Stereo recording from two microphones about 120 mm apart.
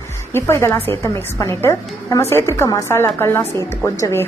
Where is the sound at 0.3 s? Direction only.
20° left (ahead or behind).